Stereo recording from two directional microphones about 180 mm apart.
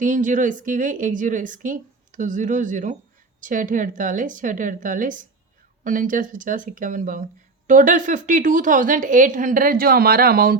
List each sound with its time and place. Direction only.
0.0 s speech: 45° right (ahead or behind)